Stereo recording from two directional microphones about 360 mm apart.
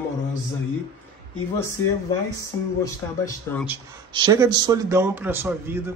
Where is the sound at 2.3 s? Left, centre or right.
Centre.